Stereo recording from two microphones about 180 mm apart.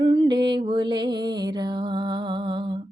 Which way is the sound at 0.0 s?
25° right (ahead or behind).